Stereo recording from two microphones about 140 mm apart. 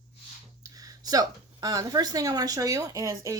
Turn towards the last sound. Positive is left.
turn(degrees=-20)  # may be behind; listen again after turning